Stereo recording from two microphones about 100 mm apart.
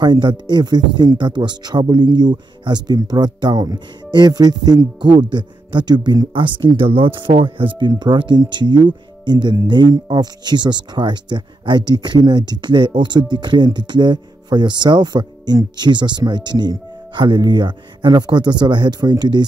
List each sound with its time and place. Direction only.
0.0 s speech: 50° right (ahead or behind)